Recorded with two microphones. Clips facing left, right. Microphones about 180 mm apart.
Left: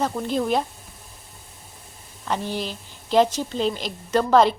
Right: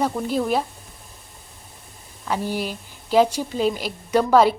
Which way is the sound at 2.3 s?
10° right (ahead or behind).